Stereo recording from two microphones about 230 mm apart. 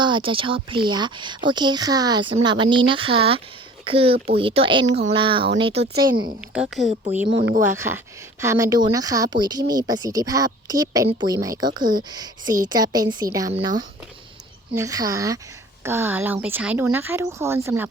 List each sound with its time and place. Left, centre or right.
0.0 s speech: right
6.5 s speech: centre
7.3 s speech: right
7.8 s a woman's voice: centre